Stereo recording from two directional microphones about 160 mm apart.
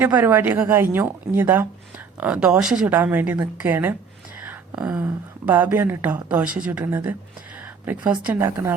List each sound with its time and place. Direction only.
0.0 s a woman's voice: 10° right (ahead or behind)
8.3 s a woman's voice: 15° right (ahead or behind)